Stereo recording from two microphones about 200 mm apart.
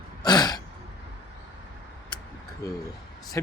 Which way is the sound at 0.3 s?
20° left (ahead or behind).